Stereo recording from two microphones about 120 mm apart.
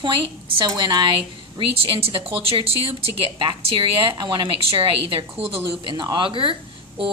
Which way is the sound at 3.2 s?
40° right (ahead or behind).